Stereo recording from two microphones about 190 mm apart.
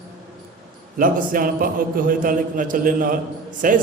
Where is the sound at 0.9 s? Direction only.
45° right (ahead or behind).